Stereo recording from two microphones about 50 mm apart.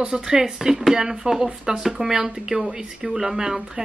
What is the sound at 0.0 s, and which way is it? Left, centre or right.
Speech, centre.